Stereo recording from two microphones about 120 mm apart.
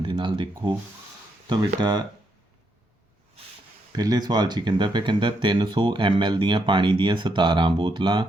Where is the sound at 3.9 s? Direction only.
35° right (ahead or behind).